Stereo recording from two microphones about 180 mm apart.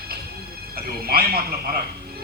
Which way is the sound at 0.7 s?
55° right (ahead or behind).